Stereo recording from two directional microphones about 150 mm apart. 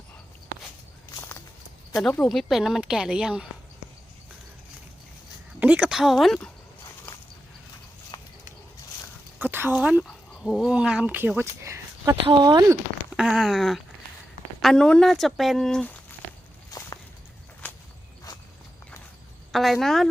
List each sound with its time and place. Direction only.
1.1 s walk: 15° left (ahead or behind)
2.3 s speech: centre (ahead or behind)
5.5 s speech: 10° right (ahead or behind)
8.1 s a sound: 20° left (ahead or behind)
9.4 s speech: 15° right (ahead or behind)
10.0 s speech: centre (ahead or behind); by 12.7 s 25° right (ahead or behind)
13.1 s speech: 5° right (ahead or behind)
16.7 s walk: 25° left (ahead or behind)
19.5 s speech: centre (ahead or behind)